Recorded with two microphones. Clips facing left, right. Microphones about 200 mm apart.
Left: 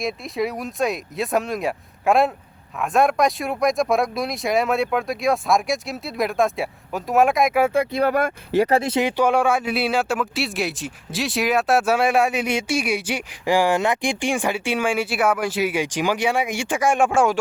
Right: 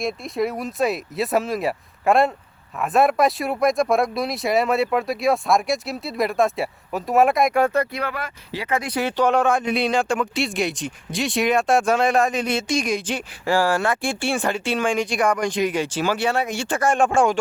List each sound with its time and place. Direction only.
0.0 s speech: centre (ahead or behind)
8.0 s speech: 50° left (ahead or behind)
8.7 s speech: 25° left (ahead or behind)
9.0 s speech: 10° left (ahead or behind)